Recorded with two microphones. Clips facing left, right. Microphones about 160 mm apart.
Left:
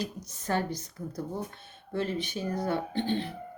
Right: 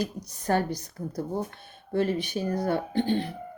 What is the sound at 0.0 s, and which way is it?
Speech, 35° right (ahead or behind).